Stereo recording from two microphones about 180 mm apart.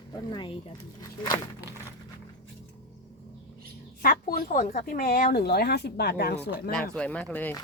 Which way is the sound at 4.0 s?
55° left (ahead or behind).